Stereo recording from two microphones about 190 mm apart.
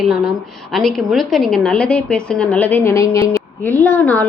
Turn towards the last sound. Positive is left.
turn(degrees=10)  # may be behind; listen again after turning